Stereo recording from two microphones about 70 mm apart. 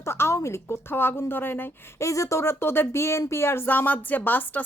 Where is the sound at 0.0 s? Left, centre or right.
Left.